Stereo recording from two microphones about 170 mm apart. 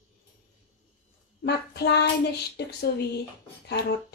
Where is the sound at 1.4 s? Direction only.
75° left (ahead or behind).